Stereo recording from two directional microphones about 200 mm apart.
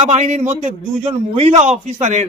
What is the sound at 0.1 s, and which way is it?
A man's voice, 35° right (ahead or behind).